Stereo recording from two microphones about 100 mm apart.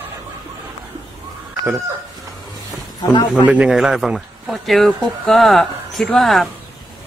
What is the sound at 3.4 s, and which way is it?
A man's voice, 10° right (ahead or behind).